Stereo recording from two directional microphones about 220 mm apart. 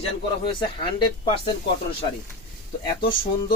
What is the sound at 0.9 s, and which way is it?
Speech, 20° left (ahead or behind).